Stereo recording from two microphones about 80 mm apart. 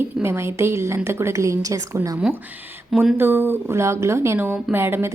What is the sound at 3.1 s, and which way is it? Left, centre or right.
A woman's voice, right.